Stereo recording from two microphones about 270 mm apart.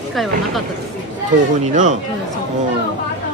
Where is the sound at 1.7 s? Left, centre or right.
Right.